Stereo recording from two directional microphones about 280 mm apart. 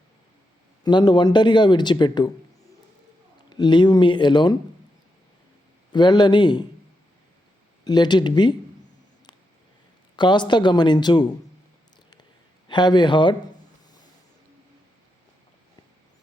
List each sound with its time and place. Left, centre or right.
0.9 s speech: centre
3.5 s speech: centre
5.9 s speech: centre
7.9 s speech: centre
10.2 s speech: centre
12.6 s speech: centre